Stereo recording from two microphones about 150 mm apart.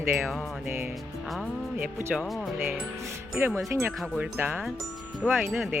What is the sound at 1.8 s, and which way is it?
Speech, 10° right (ahead or behind).